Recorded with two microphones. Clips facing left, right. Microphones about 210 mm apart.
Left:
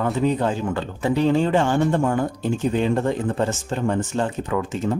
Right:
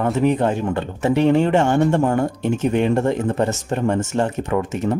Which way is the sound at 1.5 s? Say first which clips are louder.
Right 3 dB; 25° right (ahead or behind).